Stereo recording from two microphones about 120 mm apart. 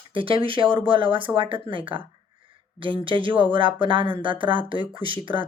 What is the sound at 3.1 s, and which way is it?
Speech, 45° right (ahead or behind).